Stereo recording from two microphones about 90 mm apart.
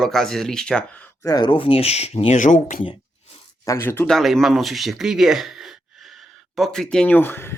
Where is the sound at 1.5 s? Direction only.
90° left.